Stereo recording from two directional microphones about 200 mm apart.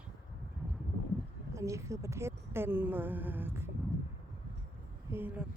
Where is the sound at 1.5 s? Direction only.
15° right (ahead or behind).